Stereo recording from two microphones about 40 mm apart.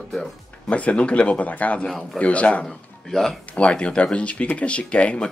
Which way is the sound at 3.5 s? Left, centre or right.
Left.